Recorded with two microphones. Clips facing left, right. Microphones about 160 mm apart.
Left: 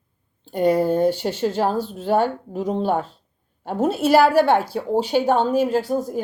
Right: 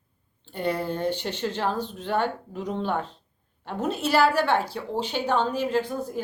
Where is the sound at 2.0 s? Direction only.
40° left (ahead or behind).